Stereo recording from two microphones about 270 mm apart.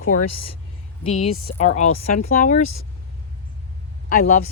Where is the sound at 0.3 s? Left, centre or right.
Left.